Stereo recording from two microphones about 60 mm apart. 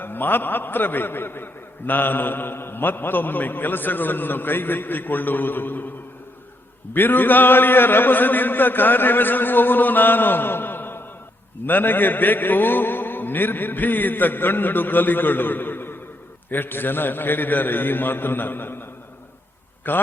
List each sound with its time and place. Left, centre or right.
0.0 s a man's voice: left
6.9 s a man's voice: left